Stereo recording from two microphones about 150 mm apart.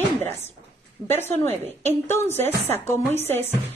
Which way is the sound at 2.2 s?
15° left (ahead or behind).